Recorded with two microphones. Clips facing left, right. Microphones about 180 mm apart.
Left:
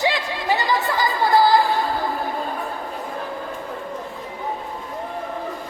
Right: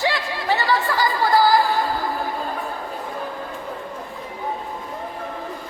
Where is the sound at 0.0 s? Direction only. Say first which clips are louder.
Left 1 dB; 15° left (ahead or behind).